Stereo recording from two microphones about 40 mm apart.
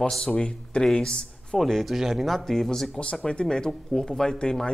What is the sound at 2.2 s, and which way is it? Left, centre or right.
Speech, centre.